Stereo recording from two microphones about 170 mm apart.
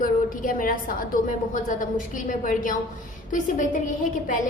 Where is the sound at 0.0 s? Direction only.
55° left (ahead or behind).